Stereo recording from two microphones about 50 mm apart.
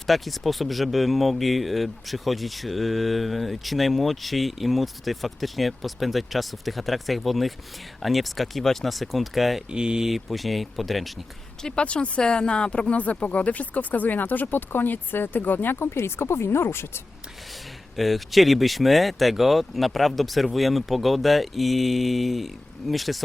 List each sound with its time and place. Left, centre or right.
0.1 s speech: centre
9.6 s speech: centre
10.1 s speech: centre
11.7 s speech: left
13.0 s speech: left
17.9 s speech: centre